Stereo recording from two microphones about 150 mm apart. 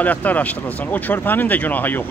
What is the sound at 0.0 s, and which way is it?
Speech, 10° left (ahead or behind).